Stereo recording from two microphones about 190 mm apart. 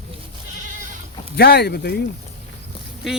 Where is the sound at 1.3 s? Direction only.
55° left (ahead or behind).